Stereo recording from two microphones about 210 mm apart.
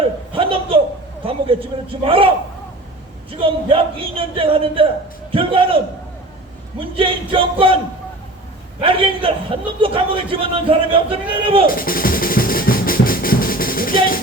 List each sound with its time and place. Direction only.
0.3 s laughter: 25° right (ahead or behind)
1.2 s a man's voice: 25° right (ahead or behind)
3.4 s a man's voice: 25° right (ahead or behind)
8.8 s a man's voice: 25° right (ahead or behind)
11.6 s drum: 45° left (ahead or behind)